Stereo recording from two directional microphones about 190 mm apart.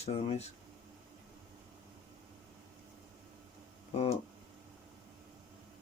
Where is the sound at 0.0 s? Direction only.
35° left (ahead or behind).